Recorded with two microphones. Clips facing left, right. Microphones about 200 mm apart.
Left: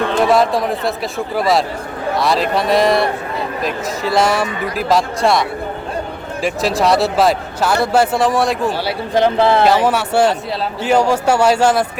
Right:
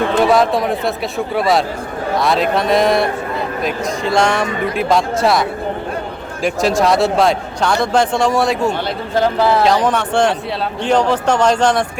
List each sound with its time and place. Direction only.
0.2 s speech: centre (ahead or behind)
9.1 s speech: 25° left (ahead or behind)
9.6 s a man's voice: 5° left (ahead or behind)